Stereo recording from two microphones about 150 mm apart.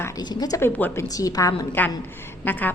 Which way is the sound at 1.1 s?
25° left (ahead or behind).